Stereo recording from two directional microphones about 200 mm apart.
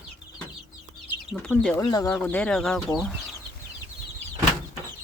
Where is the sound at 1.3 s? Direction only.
5° left (ahead or behind).